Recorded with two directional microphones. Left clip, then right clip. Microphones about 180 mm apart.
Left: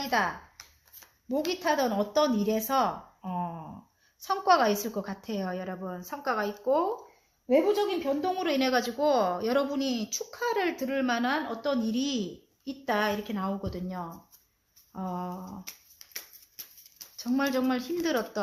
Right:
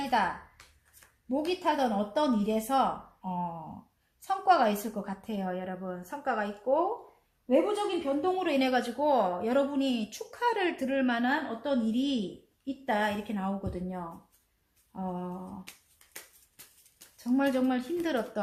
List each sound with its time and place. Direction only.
1.3 s speech: 45° left (ahead or behind)
17.3 s speech: 40° left (ahead or behind)